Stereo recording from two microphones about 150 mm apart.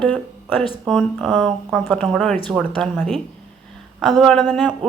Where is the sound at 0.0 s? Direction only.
10° left (ahead or behind).